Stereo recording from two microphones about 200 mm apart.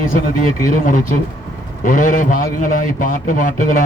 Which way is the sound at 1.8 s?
40° left (ahead or behind).